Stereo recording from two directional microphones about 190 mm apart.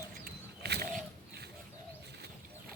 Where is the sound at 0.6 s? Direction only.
55° right (ahead or behind).